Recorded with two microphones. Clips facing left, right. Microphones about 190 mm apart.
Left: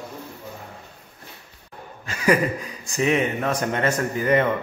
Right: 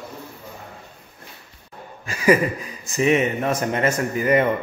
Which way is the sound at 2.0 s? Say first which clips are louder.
Right 3 dB; 10° right (ahead or behind).